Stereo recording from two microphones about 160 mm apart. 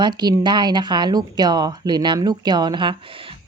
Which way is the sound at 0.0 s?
30° right (ahead or behind).